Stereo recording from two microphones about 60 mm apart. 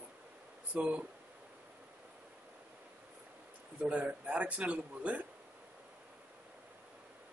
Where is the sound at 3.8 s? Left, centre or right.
Right.